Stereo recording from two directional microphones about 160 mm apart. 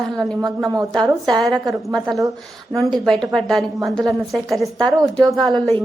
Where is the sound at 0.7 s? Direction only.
20° right (ahead or behind).